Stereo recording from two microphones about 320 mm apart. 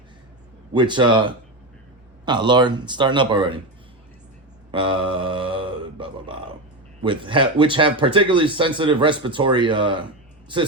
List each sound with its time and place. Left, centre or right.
0.7 s speech: centre
4.7 s a sound: centre
7.0 s speech: centre